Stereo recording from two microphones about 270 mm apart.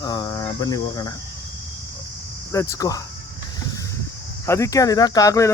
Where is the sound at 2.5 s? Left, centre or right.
Centre.